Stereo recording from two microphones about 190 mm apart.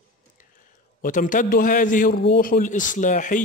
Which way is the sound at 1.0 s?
45° left (ahead or behind).